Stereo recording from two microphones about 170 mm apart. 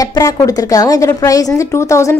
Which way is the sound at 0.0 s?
20° left (ahead or behind).